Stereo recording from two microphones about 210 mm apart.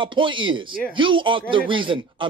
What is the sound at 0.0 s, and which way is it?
A woman's voice, 25° right (ahead or behind).